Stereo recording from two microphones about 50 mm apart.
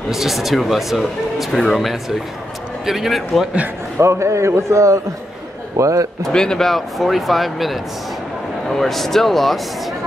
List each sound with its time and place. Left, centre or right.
0.1 s speech: centre
4.0 s a man's voice: right
6.2 s a man's voice: centre
6.7 s speech: centre